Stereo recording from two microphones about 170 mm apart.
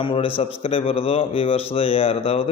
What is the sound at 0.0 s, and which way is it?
Speech, 30° left (ahead or behind).